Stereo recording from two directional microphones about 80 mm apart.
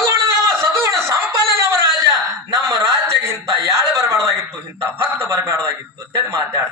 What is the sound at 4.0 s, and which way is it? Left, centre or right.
Speech, right.